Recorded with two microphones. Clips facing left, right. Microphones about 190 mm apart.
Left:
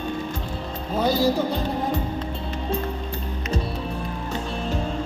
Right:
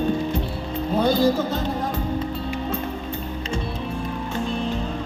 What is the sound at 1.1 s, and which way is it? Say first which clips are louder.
Music: even; 10° left (ahead or behind).